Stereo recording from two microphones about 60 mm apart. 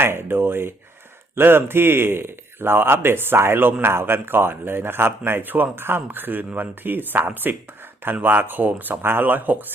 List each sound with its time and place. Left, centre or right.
0.0 s speech: right